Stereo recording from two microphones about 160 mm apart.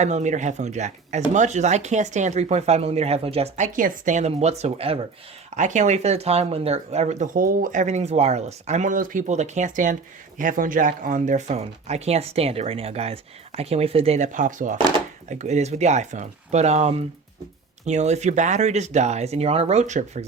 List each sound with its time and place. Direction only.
0.0 s speech: 45° right (ahead or behind)